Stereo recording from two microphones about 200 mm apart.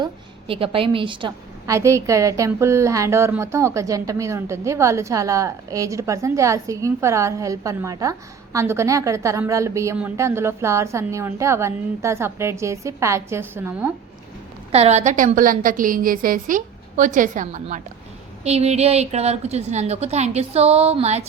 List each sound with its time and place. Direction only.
0.0 s a woman's voice: 25° right (ahead or behind); by 13.9 s 10° right (ahead or behind)
14.7 s a woman's voice: 30° right (ahead or behind)